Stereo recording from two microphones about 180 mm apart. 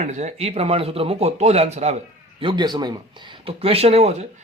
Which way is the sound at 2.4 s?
25° right (ahead or behind).